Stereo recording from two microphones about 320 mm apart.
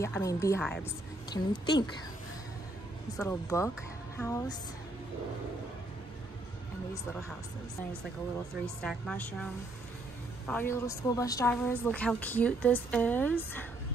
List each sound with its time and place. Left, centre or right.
0.0 s a woman's voice: centre
3.2 s a woman's voice: centre
8.8 s a woman's voice: centre